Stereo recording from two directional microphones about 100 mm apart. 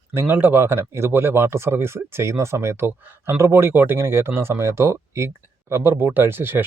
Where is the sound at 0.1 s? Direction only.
20° right (ahead or behind).